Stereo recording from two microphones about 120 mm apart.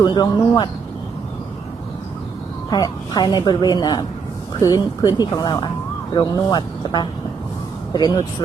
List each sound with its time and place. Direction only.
0.0 s a woman's voice: 35° left (ahead or behind)
2.6 s a woman's voice: 35° left (ahead or behind)